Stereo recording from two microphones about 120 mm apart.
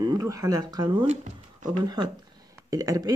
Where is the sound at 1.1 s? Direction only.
85° right.